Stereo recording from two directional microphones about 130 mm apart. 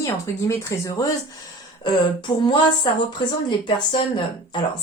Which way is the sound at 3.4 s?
40° left (ahead or behind).